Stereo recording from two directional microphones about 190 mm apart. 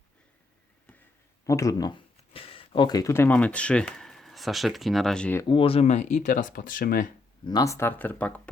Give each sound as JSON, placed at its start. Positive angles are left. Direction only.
{"t": 1.5, "sound": "speech", "side_deg": 15}
{"t": 5.5, "sound": "speech", "side_deg": 30}
{"t": 7.4, "sound": "speech", "side_deg": 20}